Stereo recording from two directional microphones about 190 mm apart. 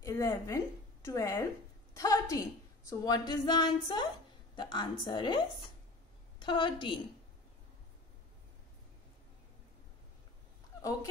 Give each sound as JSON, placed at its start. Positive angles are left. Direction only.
{"t": 0.0, "sound": "a sound", "side_deg": 15}
{"t": 2.9, "sound": "a woman's voice", "side_deg": 20}
{"t": 6.4, "sound": "a woman's voice", "side_deg": 25}
{"t": 10.8, "sound": "speech", "side_deg": 15}